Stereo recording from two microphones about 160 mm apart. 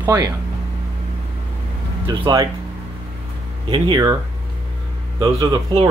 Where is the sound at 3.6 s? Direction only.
30° right (ahead or behind).